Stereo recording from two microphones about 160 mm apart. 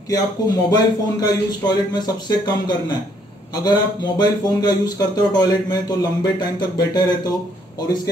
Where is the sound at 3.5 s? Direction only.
25° left (ahead or behind).